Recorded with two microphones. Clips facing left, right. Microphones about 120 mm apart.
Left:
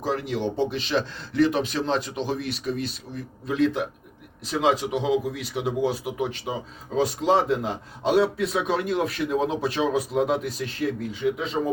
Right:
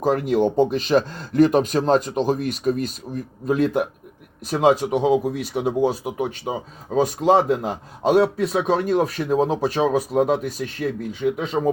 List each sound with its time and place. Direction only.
0.0 s a man's voice: 50° right (ahead or behind)
6.5 s a man's voice: 50° right (ahead or behind)